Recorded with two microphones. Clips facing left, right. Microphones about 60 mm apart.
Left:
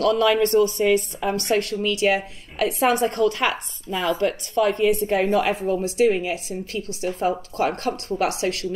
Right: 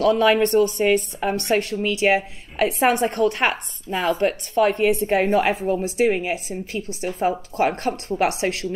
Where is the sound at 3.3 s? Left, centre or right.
Right.